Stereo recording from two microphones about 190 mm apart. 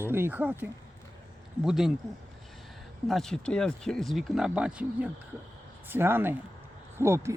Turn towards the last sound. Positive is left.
turn(degrees=-15)  # may be behind; listen again after turning